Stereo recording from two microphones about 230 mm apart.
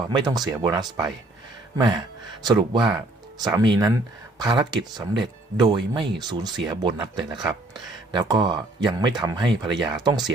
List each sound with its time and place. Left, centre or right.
0.1 s speech: centre
2.4 s speech: centre